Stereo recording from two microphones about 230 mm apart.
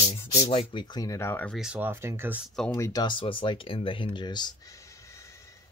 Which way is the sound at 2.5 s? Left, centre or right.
Centre.